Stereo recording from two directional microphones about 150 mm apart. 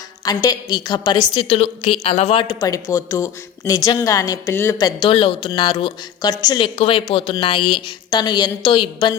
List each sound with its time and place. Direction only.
0.3 s a woman's voice: 25° left (ahead or behind); by 2.4 s 45° left (ahead or behind)
2.4 s speech: 25° left (ahead or behind)